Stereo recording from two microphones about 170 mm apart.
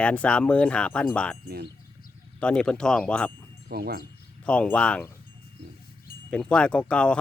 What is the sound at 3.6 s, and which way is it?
Speech, 65° right (ahead or behind).